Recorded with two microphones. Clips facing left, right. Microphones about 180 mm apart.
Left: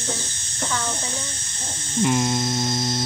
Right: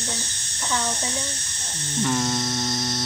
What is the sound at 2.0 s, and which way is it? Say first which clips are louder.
Speech: left 3 dB; 10° left (ahead or behind).